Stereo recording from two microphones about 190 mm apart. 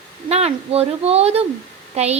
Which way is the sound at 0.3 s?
35° right (ahead or behind).